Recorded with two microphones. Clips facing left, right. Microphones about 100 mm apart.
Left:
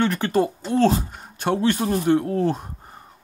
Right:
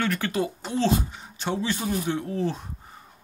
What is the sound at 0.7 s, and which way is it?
Speech, 50° left (ahead or behind).